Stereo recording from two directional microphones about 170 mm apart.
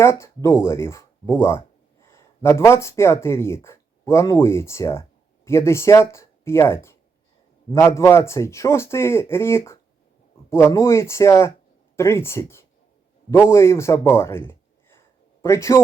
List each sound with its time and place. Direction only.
0.0 s a man's voice: 15° left (ahead or behind)